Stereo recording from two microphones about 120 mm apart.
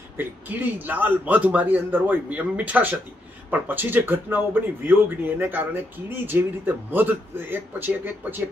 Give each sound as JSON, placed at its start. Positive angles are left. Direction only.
{"t": 0.2, "sound": "speech", "side_deg": -15}